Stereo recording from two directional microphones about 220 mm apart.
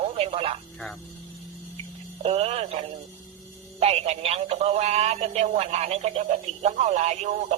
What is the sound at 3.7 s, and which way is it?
Speech, 25° right (ahead or behind).